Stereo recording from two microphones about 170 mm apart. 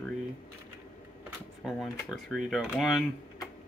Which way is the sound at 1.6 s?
Centre (ahead or behind).